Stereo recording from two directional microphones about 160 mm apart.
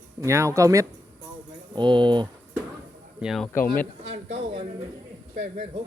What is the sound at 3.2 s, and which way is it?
Speech, centre (ahead or behind).